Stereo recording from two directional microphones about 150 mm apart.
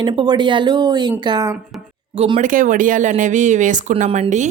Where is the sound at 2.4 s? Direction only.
60° right (ahead or behind).